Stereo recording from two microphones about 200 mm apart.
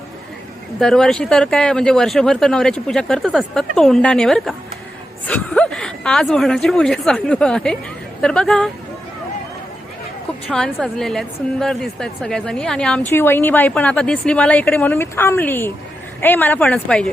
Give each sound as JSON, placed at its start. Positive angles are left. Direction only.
{"t": 0.8, "sound": "speech", "side_deg": 5}
{"t": 10.5, "sound": "a woman's voice", "side_deg": 5}